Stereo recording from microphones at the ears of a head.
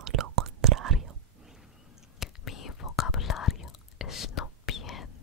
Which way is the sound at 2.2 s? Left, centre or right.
Left.